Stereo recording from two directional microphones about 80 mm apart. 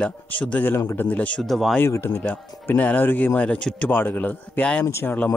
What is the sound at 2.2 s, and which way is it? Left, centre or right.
Speech, centre.